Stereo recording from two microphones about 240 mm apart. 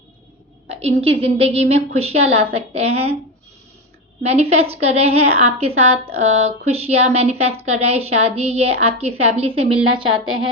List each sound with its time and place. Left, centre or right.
0.7 s a woman's voice: right
4.2 s a woman's voice: right